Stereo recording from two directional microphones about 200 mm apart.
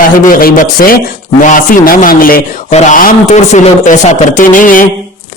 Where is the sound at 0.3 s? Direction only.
45° left (ahead or behind).